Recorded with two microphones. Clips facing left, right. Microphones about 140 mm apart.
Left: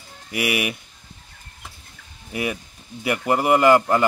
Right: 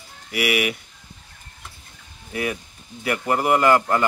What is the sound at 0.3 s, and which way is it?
Speech, 25° left (ahead or behind).